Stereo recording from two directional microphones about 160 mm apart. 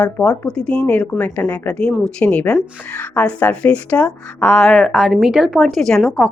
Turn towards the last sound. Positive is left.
turn(degrees=5)  # may be behind; listen again after turning